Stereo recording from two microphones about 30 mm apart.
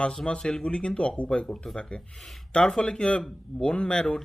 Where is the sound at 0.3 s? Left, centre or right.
Left.